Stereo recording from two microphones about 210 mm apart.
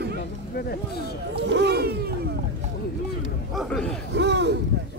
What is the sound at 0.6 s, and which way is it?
Speech, 45° left (ahead or behind).